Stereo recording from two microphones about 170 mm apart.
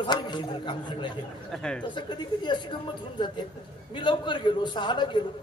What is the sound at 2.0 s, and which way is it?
Speech, 25° left (ahead or behind).